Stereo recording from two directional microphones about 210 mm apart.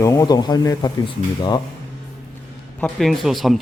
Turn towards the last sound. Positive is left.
turn(degrees=0)  # may be behind; listen again after turning